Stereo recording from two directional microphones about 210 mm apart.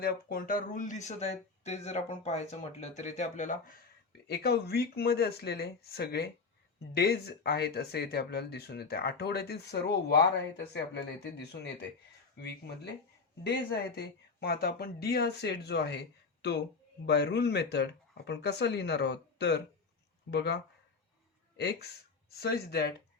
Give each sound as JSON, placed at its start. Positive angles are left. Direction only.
{"t": 0.0, "sound": "speech", "side_deg": 45}
{"t": 4.3, "sound": "speech", "side_deg": 50}
{"t": 21.6, "sound": "speech", "side_deg": 50}